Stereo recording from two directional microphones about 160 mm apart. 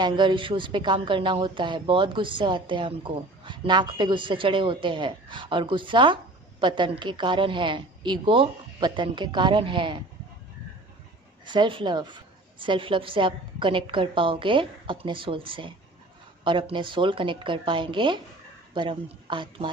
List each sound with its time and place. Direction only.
0.0 s speech: 30° right (ahead or behind)
11.4 s speech: 30° right (ahead or behind)